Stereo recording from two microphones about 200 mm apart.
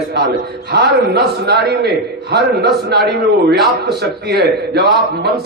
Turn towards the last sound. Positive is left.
turn(degrees=-55)  # may be behind; listen again after turning